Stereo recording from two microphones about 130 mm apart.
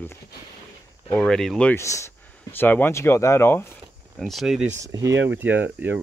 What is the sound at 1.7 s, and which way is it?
Speech, 20° left (ahead or behind).